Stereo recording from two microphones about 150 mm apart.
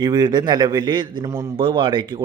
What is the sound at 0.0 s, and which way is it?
A man's voice, 30° right (ahead or behind).